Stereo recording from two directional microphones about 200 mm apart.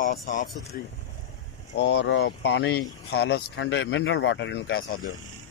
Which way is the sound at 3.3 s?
65° left (ahead or behind).